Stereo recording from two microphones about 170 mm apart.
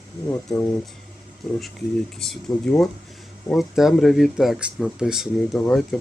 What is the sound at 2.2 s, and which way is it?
Speech, 5° left (ahead or behind).